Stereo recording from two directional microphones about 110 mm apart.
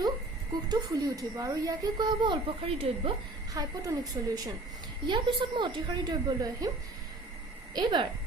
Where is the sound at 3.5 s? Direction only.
30° right (ahead or behind).